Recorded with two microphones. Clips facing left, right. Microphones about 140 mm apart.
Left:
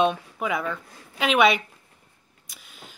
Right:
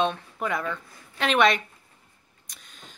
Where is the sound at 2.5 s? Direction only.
5° left (ahead or behind).